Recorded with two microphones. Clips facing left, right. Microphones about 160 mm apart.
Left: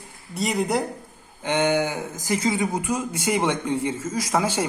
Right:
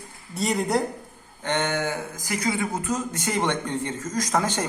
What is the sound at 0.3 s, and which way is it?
Speech, centre (ahead or behind).